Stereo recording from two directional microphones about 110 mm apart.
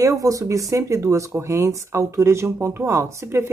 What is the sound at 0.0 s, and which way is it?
Speech, 30° right (ahead or behind).